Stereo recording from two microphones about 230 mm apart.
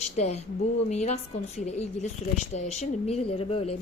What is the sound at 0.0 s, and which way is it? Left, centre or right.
A woman's voice, left.